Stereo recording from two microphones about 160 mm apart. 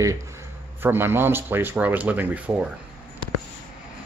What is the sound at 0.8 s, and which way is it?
Speech, 15° right (ahead or behind).